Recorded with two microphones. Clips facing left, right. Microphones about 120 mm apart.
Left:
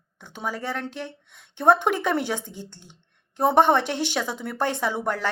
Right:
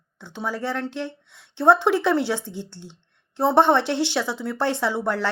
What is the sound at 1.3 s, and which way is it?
Speech, 50° left (ahead or behind).